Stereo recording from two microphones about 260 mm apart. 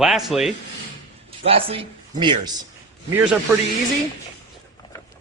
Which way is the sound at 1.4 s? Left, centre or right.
Right.